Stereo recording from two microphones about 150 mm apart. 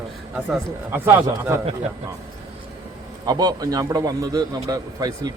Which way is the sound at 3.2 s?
25° right (ahead or behind).